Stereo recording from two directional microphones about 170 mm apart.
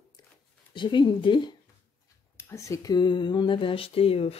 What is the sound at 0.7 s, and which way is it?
Speech, 30° left (ahead or behind).